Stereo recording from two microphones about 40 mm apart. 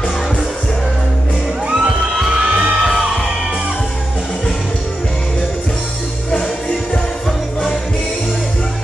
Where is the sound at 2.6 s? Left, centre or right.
Centre.